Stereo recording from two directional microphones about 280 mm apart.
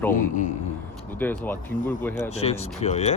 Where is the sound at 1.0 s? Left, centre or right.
Centre.